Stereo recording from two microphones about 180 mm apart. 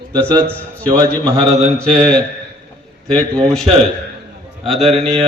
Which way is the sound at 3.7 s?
30° right (ahead or behind).